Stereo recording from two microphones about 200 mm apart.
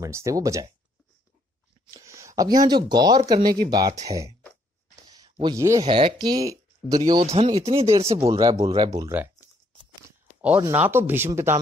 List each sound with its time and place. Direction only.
0.0 s speech: 15° right (ahead or behind)
1.9 s speech: 15° right (ahead or behind)
8.3 s speech: 15° right (ahead or behind)
10.4 s speech: 10° right (ahead or behind)